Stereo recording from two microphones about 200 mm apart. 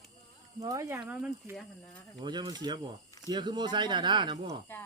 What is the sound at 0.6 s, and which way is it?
Speech, 15° right (ahead or behind).